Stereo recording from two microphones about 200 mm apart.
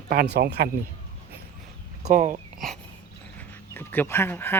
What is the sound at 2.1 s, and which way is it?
Speech, 40° right (ahead or behind).